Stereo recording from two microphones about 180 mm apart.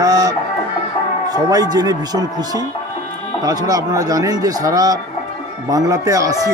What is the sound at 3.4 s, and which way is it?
Speech, 20° right (ahead or behind).